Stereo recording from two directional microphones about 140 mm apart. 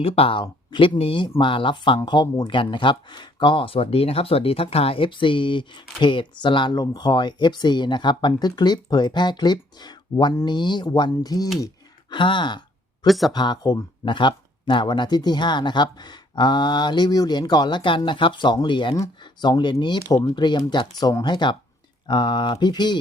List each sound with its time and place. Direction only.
0.0 s speech: 40° left (ahead or behind); by 2.6 s 25° left (ahead or behind)
2.6 s speech: 35° left (ahead or behind)
13.1 s speech: centre (ahead or behind)
13.3 s speech: 30° left (ahead or behind)